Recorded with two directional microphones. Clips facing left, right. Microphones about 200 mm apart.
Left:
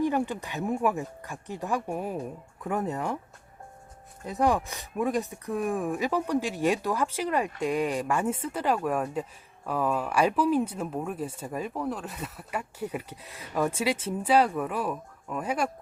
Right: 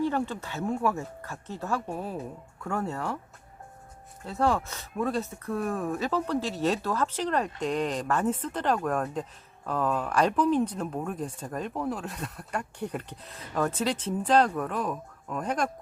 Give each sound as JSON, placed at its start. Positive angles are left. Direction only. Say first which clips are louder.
{"t": 0.0, "sound": "speech", "louder": "left 1 dB", "side_deg": 15}
{"t": 4.3, "sound": "speech", "louder": "left 1 dB", "side_deg": 15}